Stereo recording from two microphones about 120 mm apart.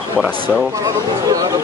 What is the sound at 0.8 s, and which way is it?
Speech, 30° right (ahead or behind).